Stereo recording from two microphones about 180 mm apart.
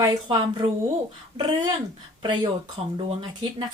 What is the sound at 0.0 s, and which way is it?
Speech, 25° right (ahead or behind).